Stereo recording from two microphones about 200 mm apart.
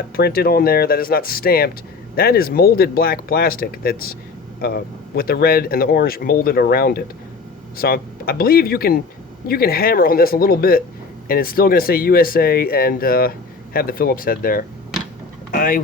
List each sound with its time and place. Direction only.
0.2 s speech: 50° left (ahead or behind)